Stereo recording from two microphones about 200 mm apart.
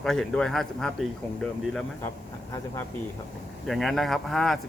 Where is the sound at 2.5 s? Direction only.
15° left (ahead or behind).